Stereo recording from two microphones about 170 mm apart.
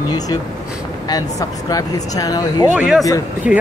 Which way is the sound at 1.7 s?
20° left (ahead or behind).